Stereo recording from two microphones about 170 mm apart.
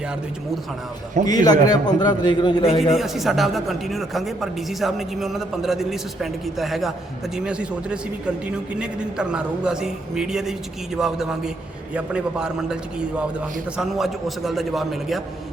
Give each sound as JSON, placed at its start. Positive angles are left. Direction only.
{"t": 1.3, "sound": "a man's voice", "side_deg": 25}
{"t": 2.6, "sound": "a man's voice", "side_deg": 40}
{"t": 2.9, "sound": "a man's voice", "side_deg": 0}